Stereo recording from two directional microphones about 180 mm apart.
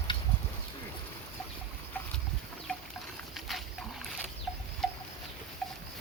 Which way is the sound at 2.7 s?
5° left (ahead or behind).